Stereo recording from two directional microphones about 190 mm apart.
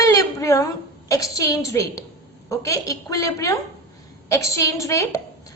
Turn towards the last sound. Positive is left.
turn(degrees=15)  # may be behind; listen again after turning